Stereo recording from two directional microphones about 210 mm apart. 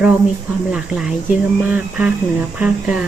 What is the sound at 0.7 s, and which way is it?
Speech, 5° right (ahead or behind).